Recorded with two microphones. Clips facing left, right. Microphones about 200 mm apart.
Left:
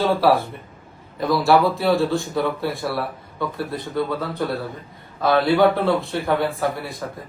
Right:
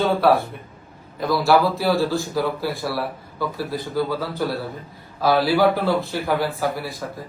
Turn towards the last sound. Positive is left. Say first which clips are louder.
# even
turn(degrees=0)  # may be behind; listen again after turning